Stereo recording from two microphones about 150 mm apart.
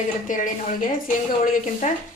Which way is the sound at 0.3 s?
60° left (ahead or behind).